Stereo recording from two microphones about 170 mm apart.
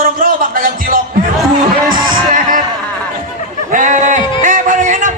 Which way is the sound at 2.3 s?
55° right (ahead or behind).